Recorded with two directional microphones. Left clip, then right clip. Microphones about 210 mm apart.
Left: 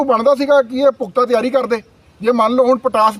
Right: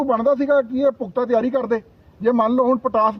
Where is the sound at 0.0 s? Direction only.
5° left (ahead or behind).